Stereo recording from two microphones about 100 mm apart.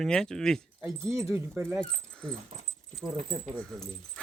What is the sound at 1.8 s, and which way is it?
Speech, 10° left (ahead or behind).